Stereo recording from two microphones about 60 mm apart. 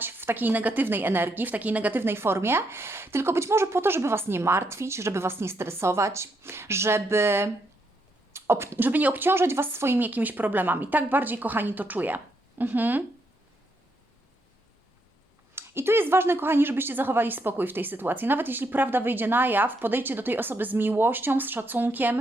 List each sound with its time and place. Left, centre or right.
0.0 s a woman's voice: right
2.0 s speech: right
8.3 s a sound: right
8.8 s a woman's voice: right
10.0 s a woman's voice: right
15.5 s a woman's voice: right